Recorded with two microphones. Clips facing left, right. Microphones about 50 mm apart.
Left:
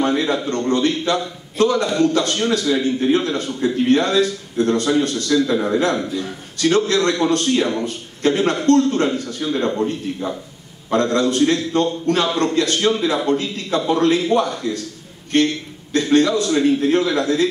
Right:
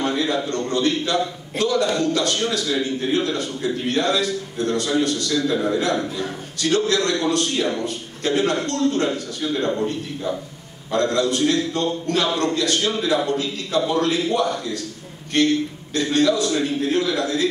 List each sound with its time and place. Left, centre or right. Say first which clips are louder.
0.0 s a man's voice: left 3 dB; left
10.9 s a man's voice: left 3 dB; left
15.9 s a man's voice: left 4 dB; left